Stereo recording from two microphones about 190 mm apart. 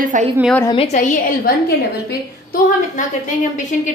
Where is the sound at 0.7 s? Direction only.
35° left (ahead or behind).